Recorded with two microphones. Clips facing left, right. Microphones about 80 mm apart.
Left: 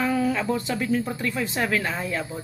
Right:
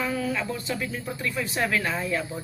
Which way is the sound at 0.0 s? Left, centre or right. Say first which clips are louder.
Left 4 dB; left.